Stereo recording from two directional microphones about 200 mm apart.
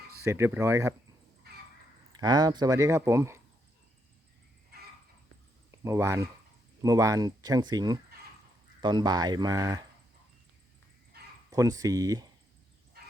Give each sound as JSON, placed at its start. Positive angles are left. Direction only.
{"t": 0.3, "sound": "speech", "side_deg": -10}
{"t": 2.1, "sound": "speech", "side_deg": -20}
{"t": 5.7, "sound": "speech", "side_deg": -15}
{"t": 11.1, "sound": "bow-wow", "side_deg": -50}
{"t": 11.5, "sound": "speech", "side_deg": -15}